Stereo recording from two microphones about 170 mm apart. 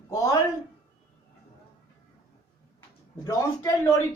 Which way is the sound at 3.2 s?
20° left (ahead or behind).